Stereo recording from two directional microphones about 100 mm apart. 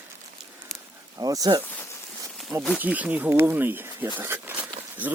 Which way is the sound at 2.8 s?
15° right (ahead or behind).